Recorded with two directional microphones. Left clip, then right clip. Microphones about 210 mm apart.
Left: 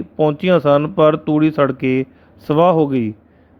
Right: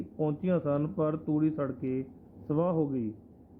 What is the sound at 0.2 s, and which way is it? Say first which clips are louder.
A man's voice: left 16 dB; 45° left (ahead or behind).